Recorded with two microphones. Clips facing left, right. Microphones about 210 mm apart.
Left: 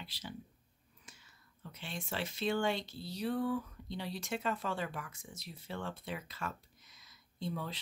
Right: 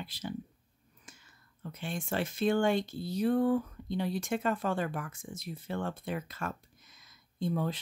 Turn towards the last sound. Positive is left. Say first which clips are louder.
# right 8 dB
turn(degrees=-50)  # may be behind; listen again after turning